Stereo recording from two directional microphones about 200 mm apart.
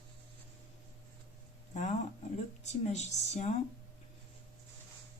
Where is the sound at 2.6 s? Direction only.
35° left (ahead or behind).